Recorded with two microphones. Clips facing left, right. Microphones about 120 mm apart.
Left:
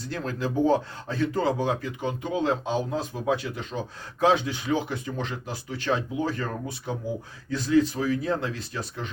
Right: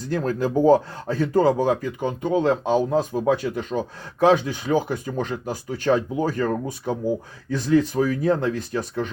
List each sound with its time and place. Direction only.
0.0 s speech: 45° right (ahead or behind)